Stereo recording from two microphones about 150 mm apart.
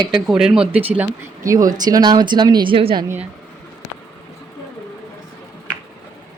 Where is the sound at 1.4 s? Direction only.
20° right (ahead or behind).